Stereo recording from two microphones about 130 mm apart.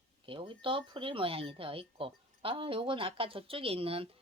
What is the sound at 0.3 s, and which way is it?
Speech, 40° right (ahead or behind).